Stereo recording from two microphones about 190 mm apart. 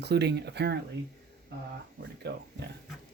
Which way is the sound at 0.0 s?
60° right (ahead or behind).